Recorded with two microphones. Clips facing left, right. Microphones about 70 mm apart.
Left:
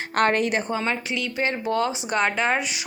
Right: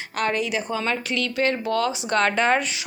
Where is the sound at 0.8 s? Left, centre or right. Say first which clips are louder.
Right 1 dB; centre.